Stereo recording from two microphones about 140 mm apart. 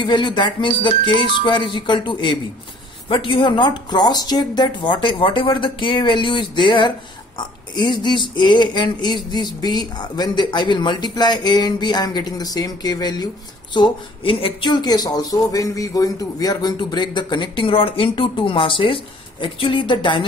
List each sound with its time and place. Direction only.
0.0 s speech: 35° left (ahead or behind)
14.2 s speech: 40° left (ahead or behind)